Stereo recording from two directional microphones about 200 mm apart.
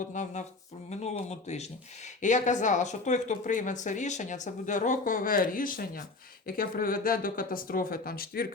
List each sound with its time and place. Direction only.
0.1 s a woman's voice: 40° left (ahead or behind)